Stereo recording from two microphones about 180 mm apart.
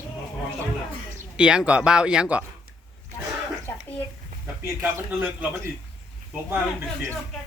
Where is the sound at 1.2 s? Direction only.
5° right (ahead or behind).